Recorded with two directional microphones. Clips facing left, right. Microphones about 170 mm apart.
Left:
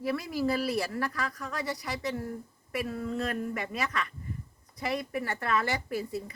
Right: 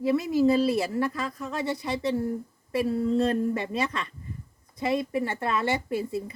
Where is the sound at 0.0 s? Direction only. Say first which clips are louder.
Right 8 dB; 20° right (ahead or behind).